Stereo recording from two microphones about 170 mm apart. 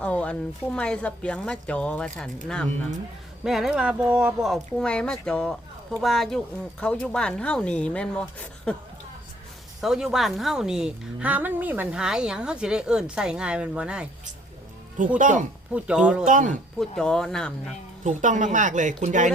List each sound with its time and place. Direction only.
0.0 s speech: 5° left (ahead or behind)
3.4 s speech: centre (ahead or behind)
9.8 s speech: centre (ahead or behind)
15.2 s speech: 50° right (ahead or behind)
15.7 s speech: 5° right (ahead or behind)
16.2 s speech: 50° right (ahead or behind)
16.7 s speech: 5° left (ahead or behind)
18.0 s speech: 45° right (ahead or behind)